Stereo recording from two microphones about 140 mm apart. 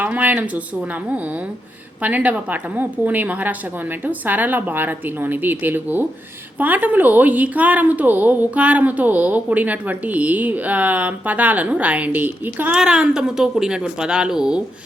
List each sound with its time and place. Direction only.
0.0 s a woman's voice: 10° right (ahead or behind)
2.0 s a woman's voice: 10° right (ahead or behind)